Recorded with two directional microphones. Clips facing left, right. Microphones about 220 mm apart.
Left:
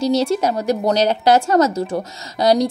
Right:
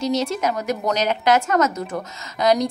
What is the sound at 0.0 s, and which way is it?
A woman's voice, 35° left (ahead or behind).